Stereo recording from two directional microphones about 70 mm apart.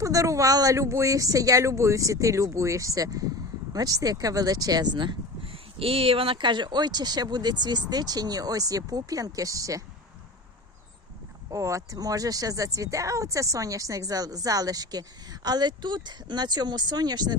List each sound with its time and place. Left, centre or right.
0.0 s speech: right
6.4 s speech: right
11.5 s speech: right